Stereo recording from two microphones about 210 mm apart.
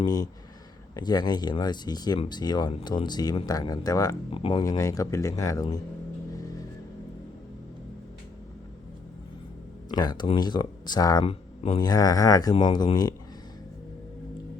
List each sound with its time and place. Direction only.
0.0 s speech: 15° left (ahead or behind)
9.9 s speech: 20° left (ahead or behind)